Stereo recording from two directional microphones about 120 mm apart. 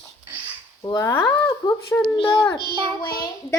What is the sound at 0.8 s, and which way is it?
Speech, 30° left (ahead or behind).